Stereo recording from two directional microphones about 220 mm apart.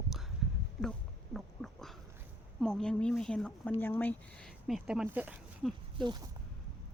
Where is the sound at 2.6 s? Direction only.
5° left (ahead or behind).